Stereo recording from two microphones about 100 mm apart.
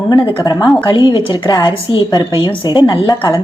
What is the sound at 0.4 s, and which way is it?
A woman's voice, 50° left (ahead or behind).